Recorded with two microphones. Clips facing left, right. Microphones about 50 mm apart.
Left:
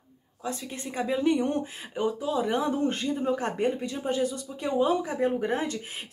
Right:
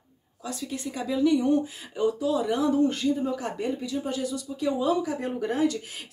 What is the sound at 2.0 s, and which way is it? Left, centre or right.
Speech, left.